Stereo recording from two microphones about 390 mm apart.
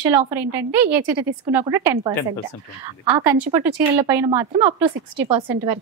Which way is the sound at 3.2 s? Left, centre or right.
Right.